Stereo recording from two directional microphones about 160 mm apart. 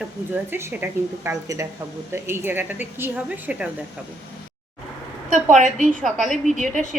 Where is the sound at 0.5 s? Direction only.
15° right (ahead or behind).